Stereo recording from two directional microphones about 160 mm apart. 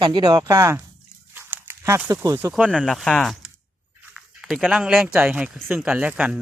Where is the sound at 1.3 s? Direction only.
15° right (ahead or behind).